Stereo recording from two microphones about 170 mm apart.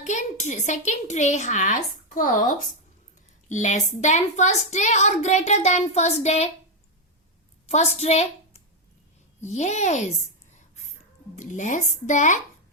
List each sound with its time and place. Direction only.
0.0 s a woman's voice: 45° left (ahead or behind)
7.7 s a woman's voice: 40° left (ahead or behind)
11.3 s a woman's voice: 45° left (ahead or behind)